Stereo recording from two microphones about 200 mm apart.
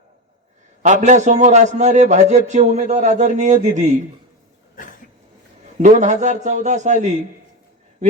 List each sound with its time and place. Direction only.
1.0 s speech: 35° right (ahead or behind)
5.8 s speech: 35° right (ahead or behind)